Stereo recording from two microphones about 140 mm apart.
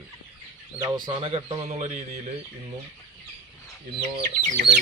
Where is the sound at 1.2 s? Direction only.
45° right (ahead or behind).